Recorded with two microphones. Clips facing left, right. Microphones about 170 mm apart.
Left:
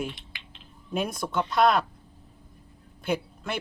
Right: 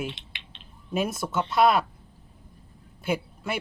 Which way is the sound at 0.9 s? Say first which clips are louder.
Right 2 dB; 5° right (ahead or behind).